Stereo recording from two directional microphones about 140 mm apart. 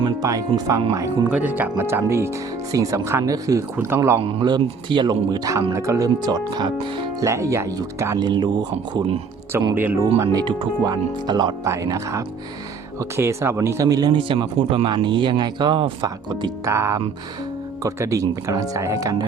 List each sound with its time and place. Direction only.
0.0 s speech: 25° right (ahead or behind)
1.3 s speech: 10° right (ahead or behind)
4.2 s speech: 35° right (ahead or behind)
7.3 s speech: 20° right (ahead or behind)
8.3 s speech: 35° right (ahead or behind)
9.7 s speech: 15° right (ahead or behind)
10.2 s speech: 25° right (ahead or behind)